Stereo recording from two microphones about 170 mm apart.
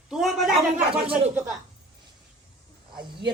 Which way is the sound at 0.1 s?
Centre (ahead or behind).